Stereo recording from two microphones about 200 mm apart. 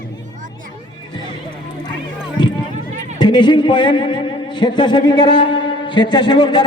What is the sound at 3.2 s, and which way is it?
A man's voice, 20° left (ahead or behind).